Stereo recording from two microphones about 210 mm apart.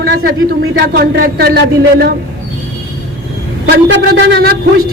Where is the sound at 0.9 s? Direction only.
50° right (ahead or behind).